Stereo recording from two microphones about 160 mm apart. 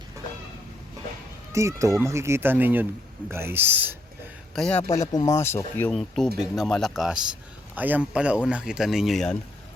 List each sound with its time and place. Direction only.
1.5 s speech: 20° right (ahead or behind)
4.5 s speech: 5° left (ahead or behind)
5.1 s speech: 20° left (ahead or behind)
5.9 s speech: centre (ahead or behind)